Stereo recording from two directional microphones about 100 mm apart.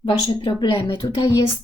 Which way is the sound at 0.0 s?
55° left (ahead or behind).